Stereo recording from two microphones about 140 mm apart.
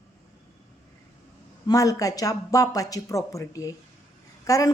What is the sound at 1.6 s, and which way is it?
A woman's voice, 25° left (ahead or behind).